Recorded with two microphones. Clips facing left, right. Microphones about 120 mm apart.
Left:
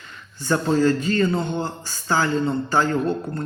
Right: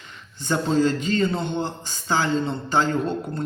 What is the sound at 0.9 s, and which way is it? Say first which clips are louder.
Speech: left 2 dB; 20° right (ahead or behind).